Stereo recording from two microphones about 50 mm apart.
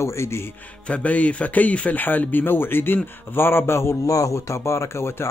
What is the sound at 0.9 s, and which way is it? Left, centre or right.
Speech, left.